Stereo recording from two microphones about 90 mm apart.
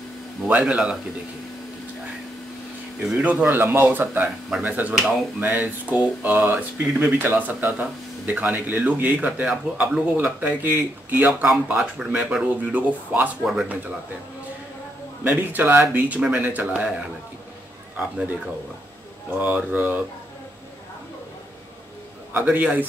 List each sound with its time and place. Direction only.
0.5 s speech: 15° right (ahead or behind)
3.0 s speech: 10° right (ahead or behind)
3.4 s speech: 25° right (ahead or behind)
4.5 s speech: 10° right (ahead or behind)
11.7 s speech: 5° right (ahead or behind)
15.2 s speech: 20° right (ahead or behind)
19.3 s speech: 20° right (ahead or behind)
22.3 s speech: 20° right (ahead or behind)